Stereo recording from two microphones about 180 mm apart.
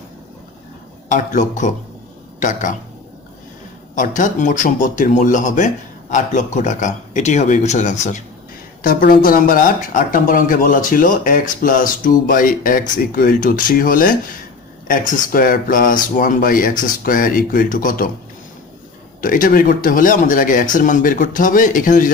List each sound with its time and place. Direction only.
1.0 s speech: 45° left (ahead or behind)
3.9 s speech: 45° left (ahead or behind)
8.8 s speech: 50° left (ahead or behind)
19.2 s speech: 50° left (ahead or behind)